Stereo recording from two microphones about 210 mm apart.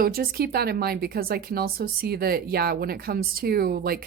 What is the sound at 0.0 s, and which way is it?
A woman's voice, 45° right (ahead or behind).